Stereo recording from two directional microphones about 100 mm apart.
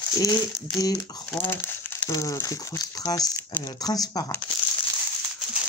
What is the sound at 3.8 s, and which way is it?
Speech, 40° left (ahead or behind).